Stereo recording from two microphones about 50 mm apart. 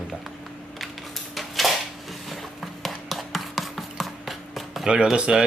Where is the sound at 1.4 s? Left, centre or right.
Centre.